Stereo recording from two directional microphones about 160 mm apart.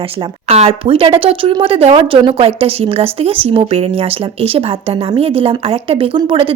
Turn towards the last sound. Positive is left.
turn(degrees=-35)  # may be behind; listen again after turning